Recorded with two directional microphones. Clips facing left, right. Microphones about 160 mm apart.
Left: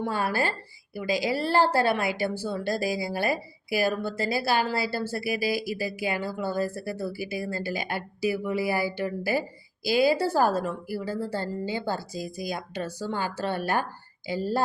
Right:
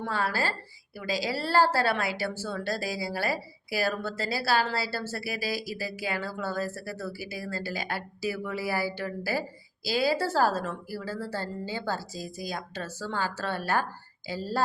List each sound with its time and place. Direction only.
0.0 s a woman's voice: 20° left (ahead or behind)